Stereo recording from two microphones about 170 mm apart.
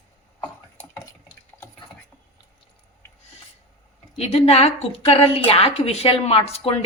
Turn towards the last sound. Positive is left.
turn(degrees=35)  # may be behind; listen again after turning